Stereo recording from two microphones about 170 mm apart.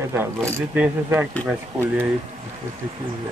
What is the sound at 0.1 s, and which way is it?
Speech, 15° right (ahead or behind).